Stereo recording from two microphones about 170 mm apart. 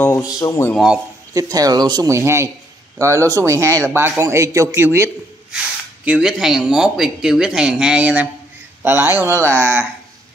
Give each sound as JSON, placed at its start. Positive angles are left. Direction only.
{"t": 0.0, "sound": "a sound", "side_deg": 15}
{"t": 0.4, "sound": "speech", "side_deg": 15}
{"t": 0.7, "sound": "speech", "side_deg": -5}
{"t": 1.3, "sound": "a man's voice", "side_deg": -20}
{"t": 6.0, "sound": "speech", "side_deg": -5}